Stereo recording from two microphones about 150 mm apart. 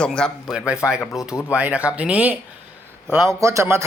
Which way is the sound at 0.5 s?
5° right (ahead or behind).